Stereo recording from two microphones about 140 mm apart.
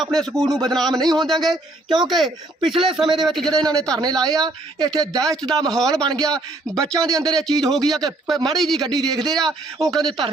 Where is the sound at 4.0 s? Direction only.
30° right (ahead or behind).